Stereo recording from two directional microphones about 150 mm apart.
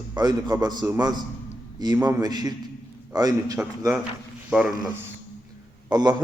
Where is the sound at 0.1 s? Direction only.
25° right (ahead or behind).